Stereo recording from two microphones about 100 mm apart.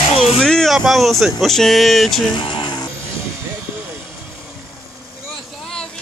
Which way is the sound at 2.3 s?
55° left (ahead or behind).